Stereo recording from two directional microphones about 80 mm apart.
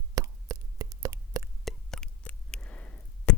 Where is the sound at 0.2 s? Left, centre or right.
Right.